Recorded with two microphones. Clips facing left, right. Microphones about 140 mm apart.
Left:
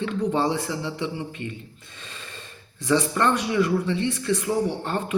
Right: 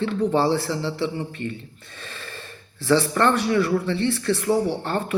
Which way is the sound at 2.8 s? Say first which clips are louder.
Right 2 dB; 15° left (ahead or behind).